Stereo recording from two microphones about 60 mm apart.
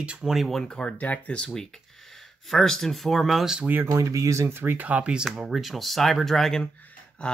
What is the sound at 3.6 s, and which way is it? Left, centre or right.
Speech, right.